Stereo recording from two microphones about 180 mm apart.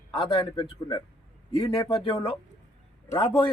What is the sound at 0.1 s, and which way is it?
A man's voice, 30° left (ahead or behind).